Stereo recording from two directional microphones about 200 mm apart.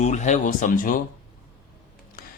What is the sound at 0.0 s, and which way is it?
Speech, 35° left (ahead or behind).